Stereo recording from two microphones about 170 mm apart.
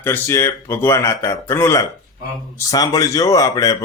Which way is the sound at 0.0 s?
15° left (ahead or behind).